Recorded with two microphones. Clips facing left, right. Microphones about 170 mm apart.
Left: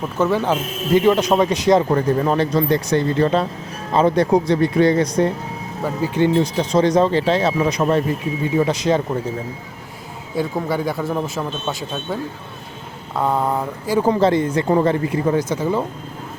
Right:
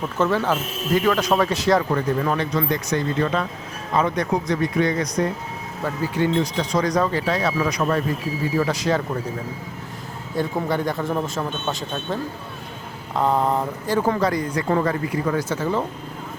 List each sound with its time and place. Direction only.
0.2 s speech: 15° left (ahead or behind)
1.9 s speech: 35° left (ahead or behind); by 9.0 s 20° left (ahead or behind)
10.3 s speech: 10° left (ahead or behind)